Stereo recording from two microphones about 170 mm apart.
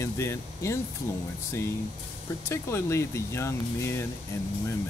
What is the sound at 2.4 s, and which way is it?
Speech, 15° left (ahead or behind).